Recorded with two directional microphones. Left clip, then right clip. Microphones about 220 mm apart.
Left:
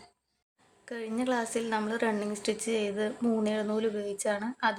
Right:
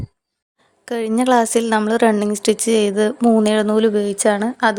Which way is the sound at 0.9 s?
50° right (ahead or behind).